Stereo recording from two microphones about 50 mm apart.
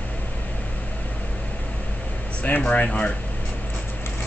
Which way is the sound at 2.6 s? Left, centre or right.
Left.